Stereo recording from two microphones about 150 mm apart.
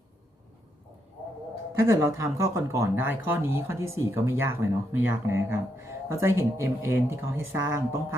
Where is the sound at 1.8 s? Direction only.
20° right (ahead or behind).